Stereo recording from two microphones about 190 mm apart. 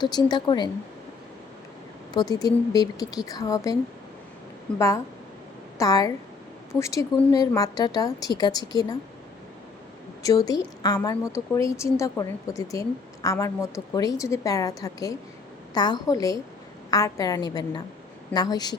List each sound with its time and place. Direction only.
0.0 s a woman's voice: 20° left (ahead or behind)
2.1 s a woman's voice: 20° left (ahead or behind)
5.7 s a woman's voice: 20° left (ahead or behind)
10.2 s a woman's voice: 20° left (ahead or behind)